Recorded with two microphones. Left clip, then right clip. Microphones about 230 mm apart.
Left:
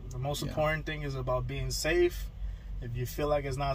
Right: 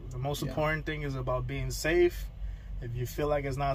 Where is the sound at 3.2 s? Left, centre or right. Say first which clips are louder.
Even; centre.